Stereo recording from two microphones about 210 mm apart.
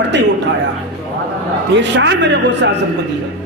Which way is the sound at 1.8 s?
60° right (ahead or behind).